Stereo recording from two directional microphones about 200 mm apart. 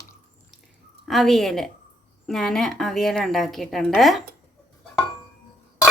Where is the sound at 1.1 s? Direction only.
Centre (ahead or behind).